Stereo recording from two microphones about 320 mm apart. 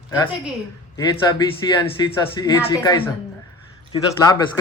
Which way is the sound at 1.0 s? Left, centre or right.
Centre.